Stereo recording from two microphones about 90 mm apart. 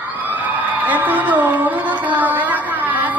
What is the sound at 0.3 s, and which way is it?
Music, 20° right (ahead or behind).